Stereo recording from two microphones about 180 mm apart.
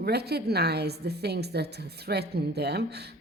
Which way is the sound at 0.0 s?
65° right (ahead or behind).